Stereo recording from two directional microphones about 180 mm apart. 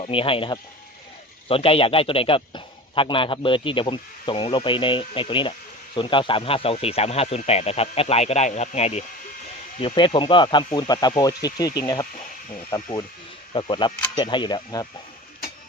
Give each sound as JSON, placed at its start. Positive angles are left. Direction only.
{"t": 0.0, "sound": "a man's voice", "side_deg": 30}